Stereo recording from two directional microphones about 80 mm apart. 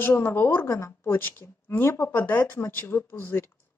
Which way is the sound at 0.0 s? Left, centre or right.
Left.